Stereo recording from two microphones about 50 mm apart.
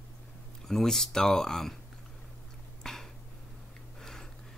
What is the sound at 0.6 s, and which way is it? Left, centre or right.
Speech, centre.